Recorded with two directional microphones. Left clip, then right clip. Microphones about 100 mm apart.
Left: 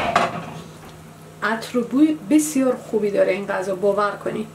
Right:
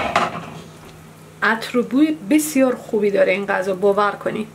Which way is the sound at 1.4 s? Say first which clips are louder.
Right 4 dB; 25° right (ahead or behind).